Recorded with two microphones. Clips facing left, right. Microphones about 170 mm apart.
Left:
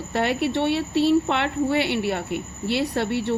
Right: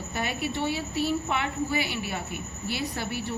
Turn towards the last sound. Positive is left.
turn(degrees=70)  # may be behind; listen again after turning